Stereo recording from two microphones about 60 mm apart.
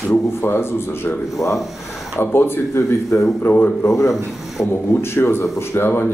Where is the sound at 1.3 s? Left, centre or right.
Left.